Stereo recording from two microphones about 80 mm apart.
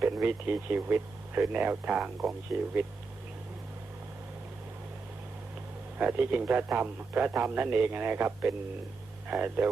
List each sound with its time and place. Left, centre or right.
0.0 s a man's voice: right
2.5 s speech: centre
6.0 s a man's voice: centre